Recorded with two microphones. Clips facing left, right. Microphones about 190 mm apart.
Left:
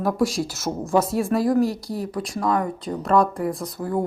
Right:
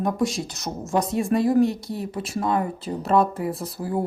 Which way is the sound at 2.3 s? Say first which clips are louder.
Left 1 dB; 25° right (ahead or behind).